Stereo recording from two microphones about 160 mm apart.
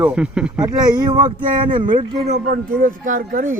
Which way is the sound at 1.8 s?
30° right (ahead or behind).